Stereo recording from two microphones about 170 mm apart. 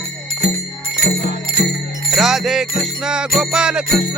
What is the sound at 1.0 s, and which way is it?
Music, 65° left (ahead or behind).